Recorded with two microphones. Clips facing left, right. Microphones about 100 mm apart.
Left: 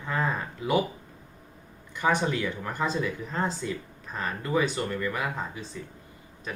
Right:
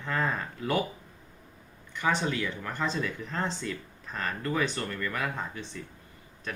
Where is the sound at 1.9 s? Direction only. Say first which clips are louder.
Left 3 dB; 15° left (ahead or behind).